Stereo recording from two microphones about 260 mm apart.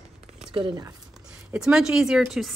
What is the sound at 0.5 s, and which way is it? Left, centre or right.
Speech, centre.